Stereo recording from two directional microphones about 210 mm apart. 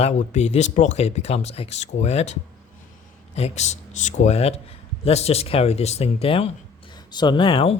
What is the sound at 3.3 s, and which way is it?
A man's voice, 30° left (ahead or behind).